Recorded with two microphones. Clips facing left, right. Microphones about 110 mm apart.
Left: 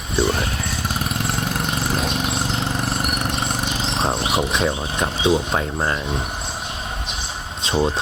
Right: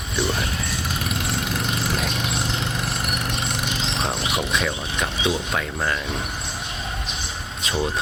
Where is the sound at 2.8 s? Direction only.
30° left (ahead or behind).